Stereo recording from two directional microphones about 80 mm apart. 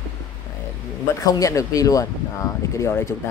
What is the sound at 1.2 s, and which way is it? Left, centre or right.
Speech, left.